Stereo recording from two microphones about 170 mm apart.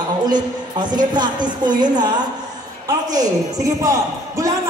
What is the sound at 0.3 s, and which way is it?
A woman's voice, 25° right (ahead or behind).